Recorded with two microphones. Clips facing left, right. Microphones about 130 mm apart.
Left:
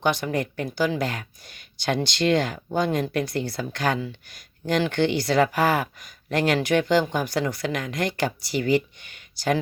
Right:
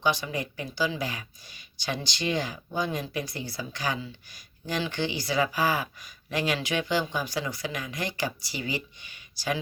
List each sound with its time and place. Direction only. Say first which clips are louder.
0.0 s speech: left 4 dB; 55° left (ahead or behind)